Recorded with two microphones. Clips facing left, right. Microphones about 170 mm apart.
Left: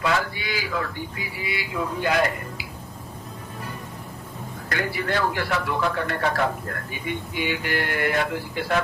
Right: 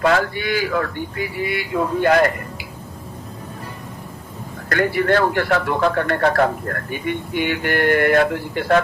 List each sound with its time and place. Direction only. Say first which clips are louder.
0.0 s speech: right 7 dB; 55° right (ahead or behind)
4.7 s speech: right 9 dB; 55° right (ahead or behind)